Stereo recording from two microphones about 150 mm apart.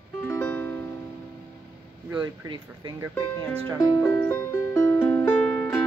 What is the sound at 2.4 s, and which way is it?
Speech, 25° right (ahead or behind).